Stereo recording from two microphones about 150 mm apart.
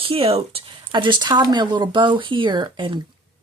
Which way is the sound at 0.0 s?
40° right (ahead or behind).